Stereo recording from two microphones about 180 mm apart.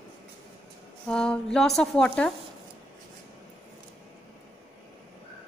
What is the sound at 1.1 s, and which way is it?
Speech, 5° left (ahead or behind).